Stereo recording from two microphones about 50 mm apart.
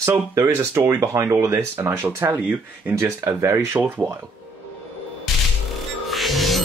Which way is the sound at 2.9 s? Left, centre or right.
Right.